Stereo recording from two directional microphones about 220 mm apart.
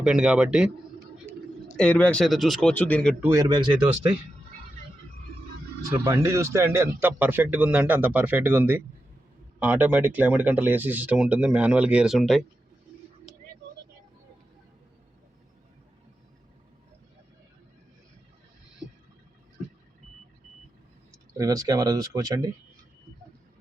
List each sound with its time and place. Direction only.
0.0 s speech: 5° right (ahead or behind)
1.8 s speech: 5° left (ahead or behind)
3.2 s speech: 15° right (ahead or behind)
5.9 s a man's voice: 10° right (ahead or behind)
21.3 s a man's voice: 15° right (ahead or behind)